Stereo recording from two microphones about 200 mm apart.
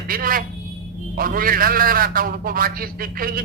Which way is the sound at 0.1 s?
45° right (ahead or behind).